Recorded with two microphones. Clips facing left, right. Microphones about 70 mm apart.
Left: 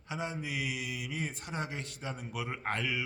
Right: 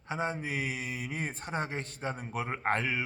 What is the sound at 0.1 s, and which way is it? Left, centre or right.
Speech, right.